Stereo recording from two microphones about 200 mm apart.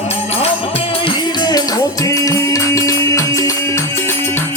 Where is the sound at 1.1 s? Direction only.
20° left (ahead or behind).